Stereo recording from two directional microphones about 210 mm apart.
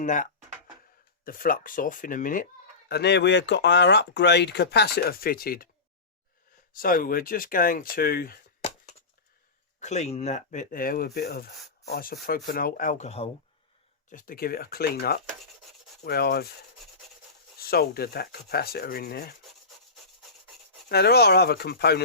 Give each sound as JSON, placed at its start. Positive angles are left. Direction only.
{"t": 0.0, "sound": "speech", "side_deg": 40}
{"t": 2.9, "sound": "speech", "side_deg": 55}
{"t": 6.7, "sound": "speech", "side_deg": 40}
{"t": 9.8, "sound": "speech", "side_deg": 35}
{"t": 14.1, "sound": "speech", "side_deg": 40}
{"t": 17.6, "sound": "speech", "side_deg": 45}
{"t": 20.9, "sound": "speech", "side_deg": 50}